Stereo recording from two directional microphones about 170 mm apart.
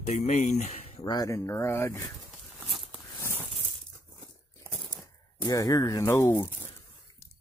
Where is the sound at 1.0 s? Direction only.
20° left (ahead or behind).